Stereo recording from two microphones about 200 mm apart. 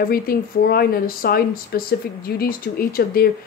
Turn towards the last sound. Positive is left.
turn(degrees=50)  # may be behind; listen again after turning